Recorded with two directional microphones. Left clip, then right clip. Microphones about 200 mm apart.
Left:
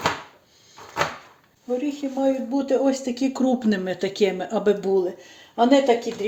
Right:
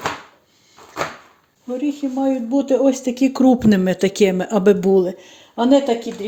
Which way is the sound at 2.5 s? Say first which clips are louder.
Right 5 dB; 30° right (ahead or behind).